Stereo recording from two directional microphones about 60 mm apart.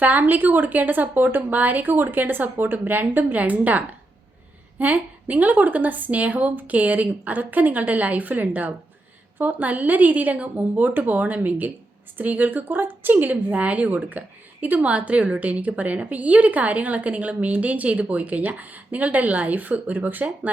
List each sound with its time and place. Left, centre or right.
0.0 s a woman's voice: right